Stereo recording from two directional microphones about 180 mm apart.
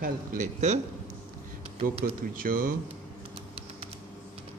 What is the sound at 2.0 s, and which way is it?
Speech, 75° right (ahead or behind).